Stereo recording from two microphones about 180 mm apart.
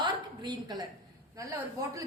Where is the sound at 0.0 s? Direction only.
20° right (ahead or behind).